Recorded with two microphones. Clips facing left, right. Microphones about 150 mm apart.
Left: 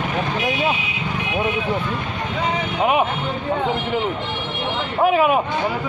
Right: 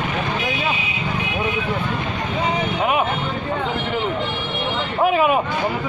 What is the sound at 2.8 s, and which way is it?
Speech, 15° left (ahead or behind).